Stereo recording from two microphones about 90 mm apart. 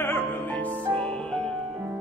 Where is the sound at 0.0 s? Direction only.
25° left (ahead or behind); by 1.4 s 10° left (ahead or behind).